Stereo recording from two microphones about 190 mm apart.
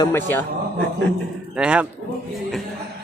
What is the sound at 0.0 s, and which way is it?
Speech, 10° left (ahead or behind).